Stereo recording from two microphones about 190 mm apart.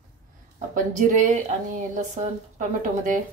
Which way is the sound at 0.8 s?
45° right (ahead or behind).